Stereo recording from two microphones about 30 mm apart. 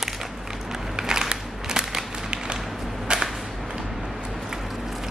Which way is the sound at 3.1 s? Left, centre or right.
Right.